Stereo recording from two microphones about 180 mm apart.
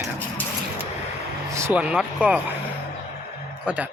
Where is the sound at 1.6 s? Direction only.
10° right (ahead or behind).